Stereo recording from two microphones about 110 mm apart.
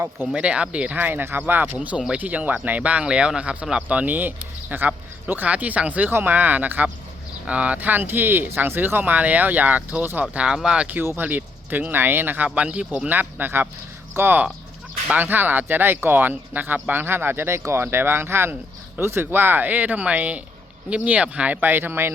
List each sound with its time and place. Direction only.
0.3 s speech: 10° right (ahead or behind)
11.0 s speech: 20° right (ahead or behind)